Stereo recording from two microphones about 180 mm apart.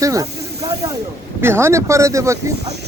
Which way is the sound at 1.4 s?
15° right (ahead or behind).